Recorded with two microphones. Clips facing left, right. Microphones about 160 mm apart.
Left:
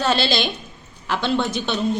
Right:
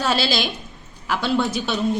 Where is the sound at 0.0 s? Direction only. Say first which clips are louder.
Left 1 dB; 5° right (ahead or behind).